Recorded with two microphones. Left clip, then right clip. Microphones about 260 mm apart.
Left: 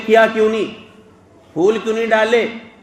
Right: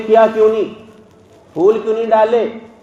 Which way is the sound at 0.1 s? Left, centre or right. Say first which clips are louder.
Right 2 dB; left.